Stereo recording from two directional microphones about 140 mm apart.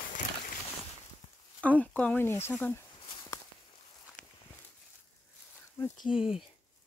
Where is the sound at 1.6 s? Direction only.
10° left (ahead or behind).